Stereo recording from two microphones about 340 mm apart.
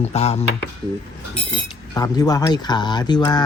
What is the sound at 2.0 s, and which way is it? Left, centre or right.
Speech, centre.